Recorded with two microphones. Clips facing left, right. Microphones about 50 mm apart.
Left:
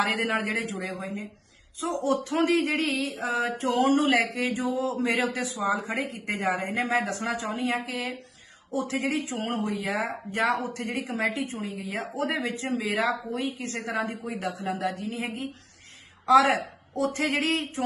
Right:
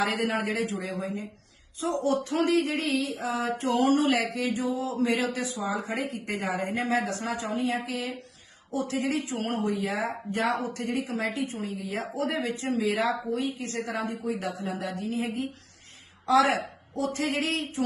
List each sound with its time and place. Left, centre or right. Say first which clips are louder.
0.0 s speech: left 1 dB; left